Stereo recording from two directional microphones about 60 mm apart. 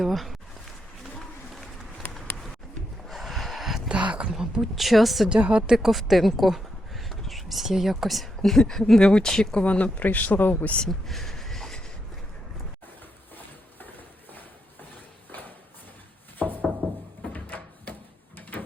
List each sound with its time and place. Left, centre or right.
0.0 s speech: centre
1.2 s run: centre
3.1 s gasp: centre
3.8 s a sound: centre
4.3 s a woman's voice: centre
5.3 s a woman's voice: centre
5.7 s speech: centre
8.4 s speech: centre
9.6 s speech: left
10.8 s a sound: centre
13.3 s a sound: left
16.4 s a sound: left